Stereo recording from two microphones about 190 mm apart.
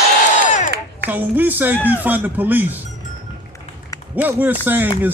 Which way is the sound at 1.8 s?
10° right (ahead or behind).